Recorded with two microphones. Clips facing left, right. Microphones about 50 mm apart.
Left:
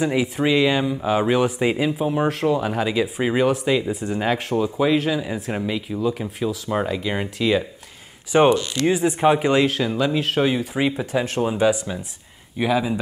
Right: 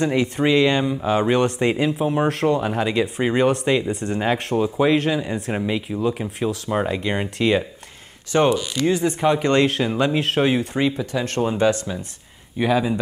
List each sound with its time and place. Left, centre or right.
0.0 s speech: centre
5.5 s speech: centre
8.3 s speech: centre
11.0 s speech: left
11.2 s speech: centre
12.5 s speech: centre